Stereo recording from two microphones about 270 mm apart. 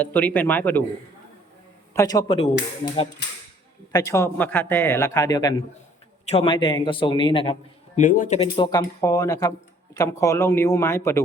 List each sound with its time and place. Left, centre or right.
0.0 s a man's voice: centre
1.9 s a man's voice: centre
3.9 s a man's voice: centre
7.9 s a man's voice: left; by 11.2 s centre